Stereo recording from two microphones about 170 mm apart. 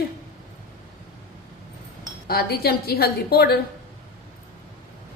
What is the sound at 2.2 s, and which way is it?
A woman's voice, 65° left (ahead or behind).